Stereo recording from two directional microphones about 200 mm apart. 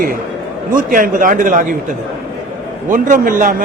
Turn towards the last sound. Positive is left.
turn(degrees=-45)  # may be behind; listen again after turning